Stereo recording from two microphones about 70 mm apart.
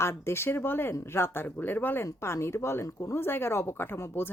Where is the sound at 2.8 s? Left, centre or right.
Left.